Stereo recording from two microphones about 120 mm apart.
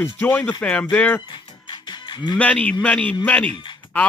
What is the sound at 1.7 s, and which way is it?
Music, 40° left (ahead or behind).